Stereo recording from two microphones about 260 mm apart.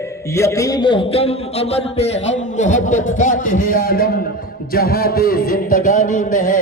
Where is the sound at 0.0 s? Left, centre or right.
Centre.